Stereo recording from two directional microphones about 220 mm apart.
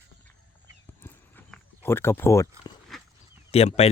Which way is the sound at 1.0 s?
10° left (ahead or behind).